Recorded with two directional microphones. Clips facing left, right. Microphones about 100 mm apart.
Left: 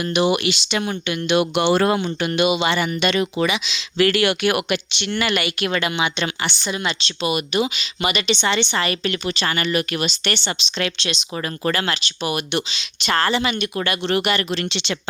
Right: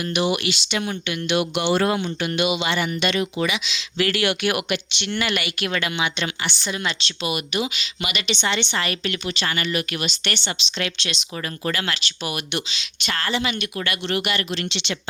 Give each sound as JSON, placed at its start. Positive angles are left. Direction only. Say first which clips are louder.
{"t": 0.0, "sound": "a woman's voice", "louder": "left 4 dB", "side_deg": 30}
{"t": 1.6, "sound": "speech", "louder": "left 3 dB", "side_deg": 45}
{"t": 2.2, "sound": "a woman's voice", "louder": "left 4 dB", "side_deg": 35}
{"t": 3.5, "sound": "speech", "louder": "left 3 dB", "side_deg": 30}
{"t": 3.9, "sound": "speech", "louder": "left 4 dB", "side_deg": 50}
{"t": 4.7, "sound": "speech", "louder": "left 2 dB", "side_deg": 75}
{"t": 5.3, "sound": "a woman's voice", "louder": "left 3 dB", "side_deg": 35}
{"t": 7.2, "sound": "a woman's voice", "louder": "left 5 dB", "side_deg": 35}
{"t": 11.1, "sound": "speech", "louder": "left 4 dB", "side_deg": 25}
{"t": 11.6, "sound": "a woman's voice", "louder": "left 4 dB", "side_deg": 35}